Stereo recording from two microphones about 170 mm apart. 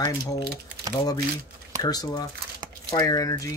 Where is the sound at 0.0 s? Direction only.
25° left (ahead or behind).